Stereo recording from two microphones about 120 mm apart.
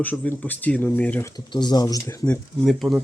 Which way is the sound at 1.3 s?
35° left (ahead or behind).